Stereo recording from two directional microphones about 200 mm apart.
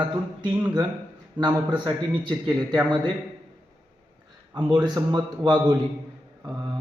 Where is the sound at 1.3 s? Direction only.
20° right (ahead or behind).